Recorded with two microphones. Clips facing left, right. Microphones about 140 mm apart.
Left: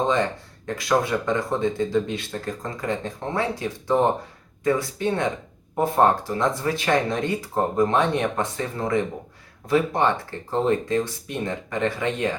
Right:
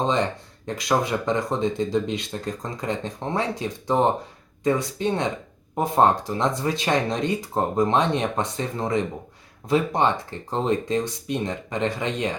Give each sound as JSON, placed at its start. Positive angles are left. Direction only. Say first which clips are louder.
{"t": 0.8, "sound": "speech", "louder": "left 1 dB", "side_deg": -20}